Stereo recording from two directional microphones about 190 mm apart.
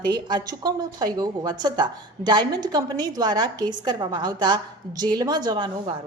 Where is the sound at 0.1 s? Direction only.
20° right (ahead or behind).